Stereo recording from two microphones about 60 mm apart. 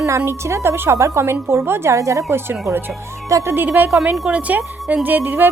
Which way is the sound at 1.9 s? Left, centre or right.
Right.